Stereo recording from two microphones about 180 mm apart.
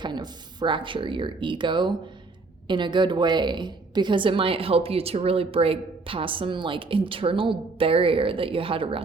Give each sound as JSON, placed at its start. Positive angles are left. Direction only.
{"t": 0.0, "sound": "a woman's voice", "side_deg": -25}